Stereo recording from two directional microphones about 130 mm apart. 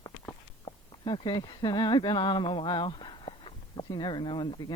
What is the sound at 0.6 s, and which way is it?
Speech, 40° left (ahead or behind).